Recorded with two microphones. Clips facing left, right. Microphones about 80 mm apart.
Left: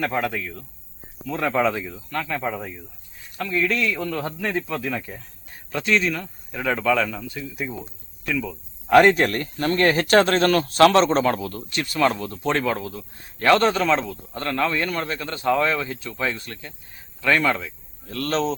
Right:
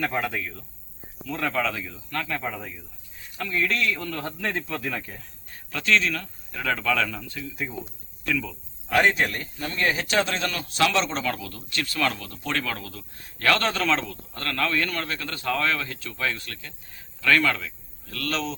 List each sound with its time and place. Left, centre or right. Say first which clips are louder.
0.0 s speech: left 3 dB; centre
1.3 s speech: left 5 dB; left
2.0 s speech: left 3 dB; centre
8.9 s speech: left 7 dB; left
11.7 s speech: left 5 dB; left